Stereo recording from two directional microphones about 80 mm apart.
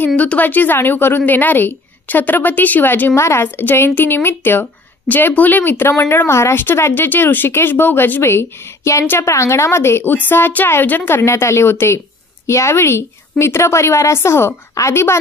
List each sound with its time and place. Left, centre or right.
0.0 s a woman's voice: centre
3.2 s a woman's voice: left
3.4 s a woman's voice: left
9.3 s a woman's voice: left